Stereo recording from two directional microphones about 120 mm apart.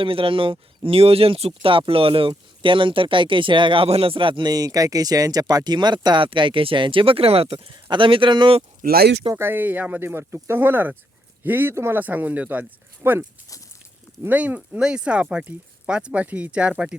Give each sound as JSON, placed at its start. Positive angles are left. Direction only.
{"t": 0.0, "sound": "speech", "side_deg": -50}
{"t": 9.3, "sound": "speech", "side_deg": -20}